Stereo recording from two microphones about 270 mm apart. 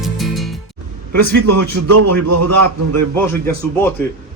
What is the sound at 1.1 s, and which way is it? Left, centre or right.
A man's voice, right.